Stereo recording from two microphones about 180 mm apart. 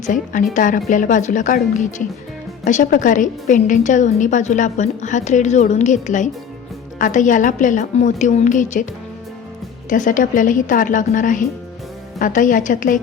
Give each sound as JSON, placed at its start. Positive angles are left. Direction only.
{"t": 0.0, "sound": "a woman's voice", "side_deg": 45}
{"t": 9.9, "sound": "a woman's voice", "side_deg": 45}